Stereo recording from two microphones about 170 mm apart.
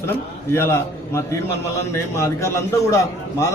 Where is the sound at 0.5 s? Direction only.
15° left (ahead or behind).